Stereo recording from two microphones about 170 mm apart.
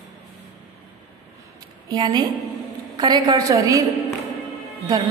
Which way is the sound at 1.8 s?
25° right (ahead or behind).